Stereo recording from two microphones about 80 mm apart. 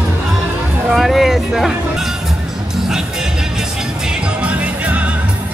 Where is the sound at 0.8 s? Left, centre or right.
Centre.